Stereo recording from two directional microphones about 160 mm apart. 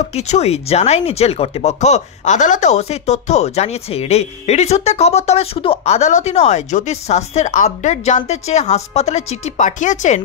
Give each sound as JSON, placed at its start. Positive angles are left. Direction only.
{"t": 0.1, "sound": "speech", "side_deg": 45}